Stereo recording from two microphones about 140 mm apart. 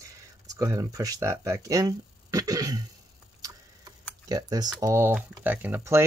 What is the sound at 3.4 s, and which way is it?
Tick-tock, 25° right (ahead or behind).